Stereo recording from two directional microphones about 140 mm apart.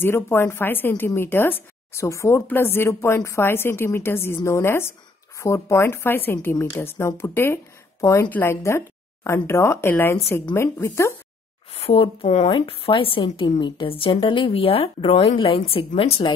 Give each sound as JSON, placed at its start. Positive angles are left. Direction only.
{"t": 0.0, "sound": "a woman's voice", "side_deg": 15}
{"t": 11.7, "sound": "speech", "side_deg": 45}